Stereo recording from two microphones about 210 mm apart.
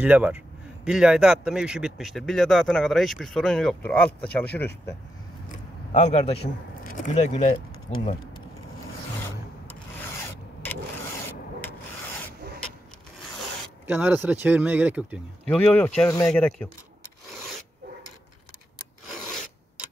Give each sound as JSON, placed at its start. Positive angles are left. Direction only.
{"t": 0.0, "sound": "speech", "side_deg": -5}
{"t": 5.5, "sound": "a sound", "side_deg": 30}
{"t": 6.4, "sound": "speech", "side_deg": 40}
{"t": 9.7, "sound": "rub", "side_deg": 10}
{"t": 13.8, "sound": "speech", "side_deg": -10}
{"t": 15.7, "sound": "speech", "side_deg": 5}